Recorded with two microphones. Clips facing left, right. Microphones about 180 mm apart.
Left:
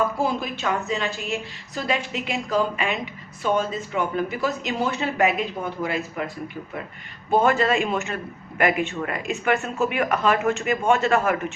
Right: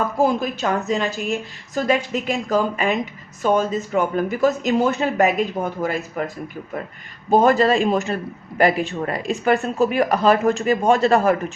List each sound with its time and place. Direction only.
0.2 s a man's voice: 40° right (ahead or behind)